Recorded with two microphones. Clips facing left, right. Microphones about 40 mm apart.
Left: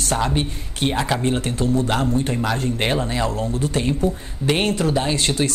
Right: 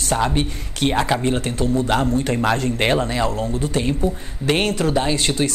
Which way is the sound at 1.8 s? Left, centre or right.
Right.